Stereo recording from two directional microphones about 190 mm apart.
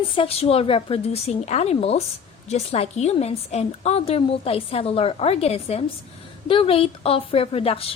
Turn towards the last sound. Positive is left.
turn(degrees=30)  # may be behind; listen again after turning